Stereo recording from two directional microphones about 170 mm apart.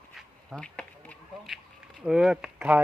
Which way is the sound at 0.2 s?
5° left (ahead or behind).